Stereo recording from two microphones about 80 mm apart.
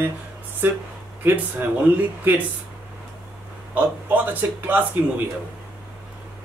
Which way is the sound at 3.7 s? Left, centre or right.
Right.